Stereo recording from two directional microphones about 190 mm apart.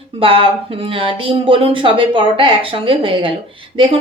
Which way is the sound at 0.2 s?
30° right (ahead or behind).